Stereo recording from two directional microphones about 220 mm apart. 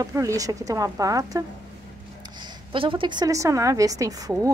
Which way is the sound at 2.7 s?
25° right (ahead or behind).